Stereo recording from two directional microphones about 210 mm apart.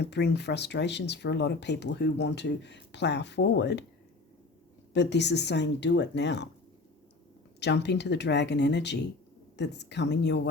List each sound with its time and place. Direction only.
0.0 s speech: 55° left (ahead or behind)
4.9 s speech: 55° left (ahead or behind)
7.6 s speech: 55° left (ahead or behind)